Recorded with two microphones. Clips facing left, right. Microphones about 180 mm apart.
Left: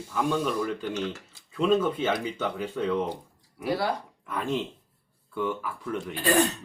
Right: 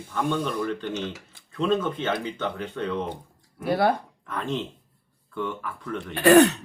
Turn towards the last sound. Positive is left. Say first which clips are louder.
# right 8 dB
turn(degrees=-70)  # may be behind; listen again after turning